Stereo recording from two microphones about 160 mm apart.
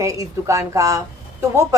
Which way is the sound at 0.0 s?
20° right (ahead or behind).